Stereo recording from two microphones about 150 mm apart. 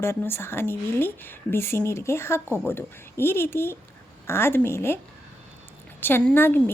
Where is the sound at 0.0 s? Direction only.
15° left (ahead or behind).